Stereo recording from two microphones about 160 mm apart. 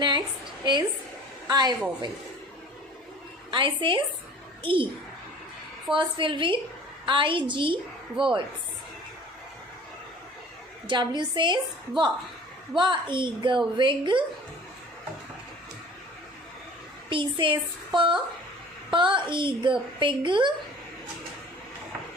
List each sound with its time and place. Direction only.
0.6 s a woman's voice: 25° right (ahead or behind)
3.5 s a woman's voice: 30° right (ahead or behind)
5.9 s a woman's voice: 30° right (ahead or behind)
10.8 s a woman's voice: 30° right (ahead or behind)
17.1 s a woman's voice: 30° right (ahead or behind)